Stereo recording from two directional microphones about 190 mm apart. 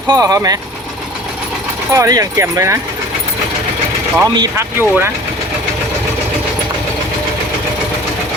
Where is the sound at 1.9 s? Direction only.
15° right (ahead or behind).